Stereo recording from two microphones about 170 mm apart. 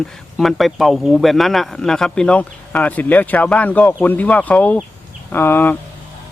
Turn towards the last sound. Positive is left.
turn(degrees=10)  # may be behind; listen again after turning